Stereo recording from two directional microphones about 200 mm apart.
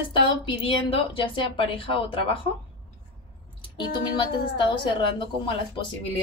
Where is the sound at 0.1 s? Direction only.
25° left (ahead or behind).